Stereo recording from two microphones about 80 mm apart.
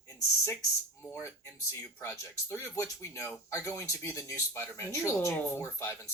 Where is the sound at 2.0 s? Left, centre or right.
Left.